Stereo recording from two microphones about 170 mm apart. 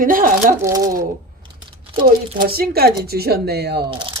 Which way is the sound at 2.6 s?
65° right (ahead or behind).